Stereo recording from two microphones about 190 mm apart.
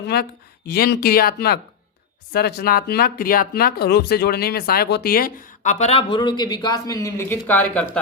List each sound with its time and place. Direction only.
0.1 s speech: 60° left (ahead or behind); by 7.9 s 10° left (ahead or behind)